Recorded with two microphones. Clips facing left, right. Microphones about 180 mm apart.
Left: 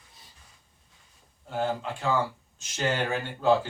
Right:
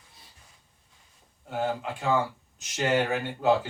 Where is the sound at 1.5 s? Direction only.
15° right (ahead or behind).